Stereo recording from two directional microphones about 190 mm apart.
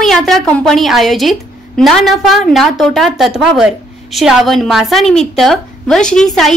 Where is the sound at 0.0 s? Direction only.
Centre (ahead or behind).